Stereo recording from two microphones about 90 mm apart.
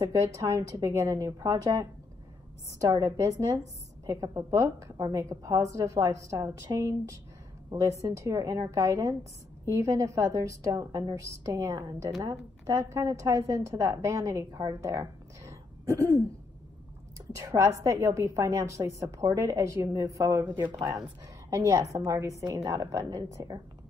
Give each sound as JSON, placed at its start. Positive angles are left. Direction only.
{"t": 0.0, "sound": "a woman's voice", "side_deg": -35}
{"t": 17.3, "sound": "a woman's voice", "side_deg": -35}